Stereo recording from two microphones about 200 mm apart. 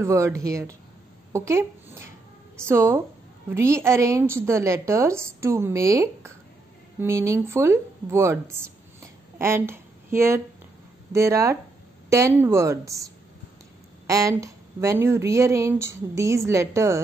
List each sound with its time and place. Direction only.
0.0 s a woman's voice: 15° right (ahead or behind)